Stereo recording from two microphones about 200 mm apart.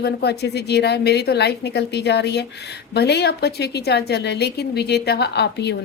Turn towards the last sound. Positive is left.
turn(degrees=55)  # may be behind; listen again after turning